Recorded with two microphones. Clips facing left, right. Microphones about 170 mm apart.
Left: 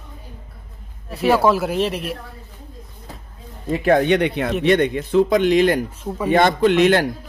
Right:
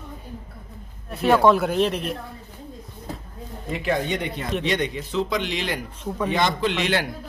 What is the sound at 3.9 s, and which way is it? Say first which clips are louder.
Speech: left 9 dB; 70° left (ahead or behind).